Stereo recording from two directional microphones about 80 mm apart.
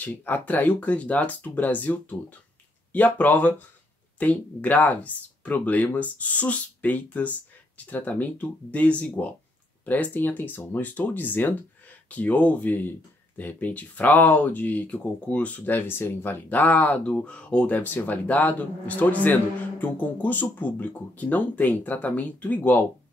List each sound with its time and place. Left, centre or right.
0.0 s speech: left